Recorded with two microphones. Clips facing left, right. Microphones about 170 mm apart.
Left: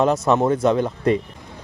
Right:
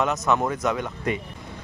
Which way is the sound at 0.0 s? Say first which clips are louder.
Left 5 dB; 30° left (ahead or behind).